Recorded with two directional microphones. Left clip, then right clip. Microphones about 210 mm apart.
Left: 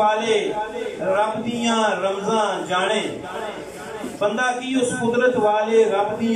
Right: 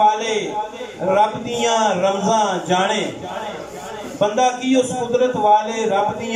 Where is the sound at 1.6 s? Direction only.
25° right (ahead or behind).